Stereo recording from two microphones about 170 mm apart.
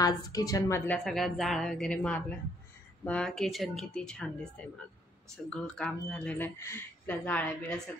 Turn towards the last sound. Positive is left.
turn(degrees=10)  # may be behind; listen again after turning